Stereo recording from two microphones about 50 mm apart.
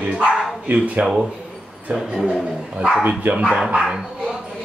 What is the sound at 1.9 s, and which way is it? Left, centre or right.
Speech, right.